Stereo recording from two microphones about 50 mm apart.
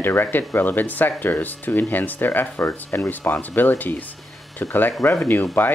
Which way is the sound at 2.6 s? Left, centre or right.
Left.